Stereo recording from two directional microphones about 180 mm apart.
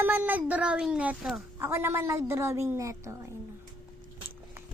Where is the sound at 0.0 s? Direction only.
10° right (ahead or behind).